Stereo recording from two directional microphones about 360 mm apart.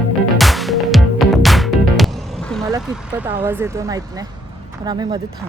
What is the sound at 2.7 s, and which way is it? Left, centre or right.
Vehicle, centre.